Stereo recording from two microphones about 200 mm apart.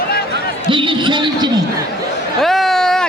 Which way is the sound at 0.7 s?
25° right (ahead or behind).